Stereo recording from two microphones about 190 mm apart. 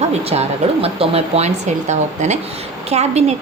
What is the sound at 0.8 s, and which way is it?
A woman's voice, 30° right (ahead or behind).